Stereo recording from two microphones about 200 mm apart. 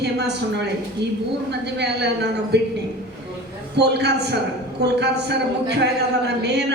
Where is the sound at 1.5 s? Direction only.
60° right (ahead or behind).